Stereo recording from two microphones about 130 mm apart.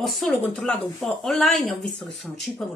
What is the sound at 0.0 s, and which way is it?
Speech, centre (ahead or behind).